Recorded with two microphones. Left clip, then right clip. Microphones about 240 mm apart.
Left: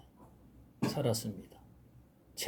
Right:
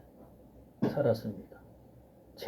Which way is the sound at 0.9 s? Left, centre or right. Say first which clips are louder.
Right 6 dB; left.